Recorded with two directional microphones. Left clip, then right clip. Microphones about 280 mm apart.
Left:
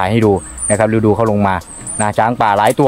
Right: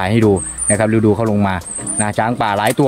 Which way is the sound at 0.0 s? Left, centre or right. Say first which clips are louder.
Left 1 dB; centre.